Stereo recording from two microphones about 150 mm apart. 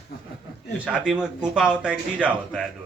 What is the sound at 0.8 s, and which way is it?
Speech, 5° right (ahead or behind).